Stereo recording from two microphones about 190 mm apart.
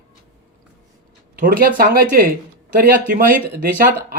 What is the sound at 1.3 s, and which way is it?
Speech, 50° right (ahead or behind).